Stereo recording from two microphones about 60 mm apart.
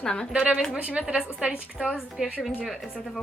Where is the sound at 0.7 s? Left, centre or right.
Right.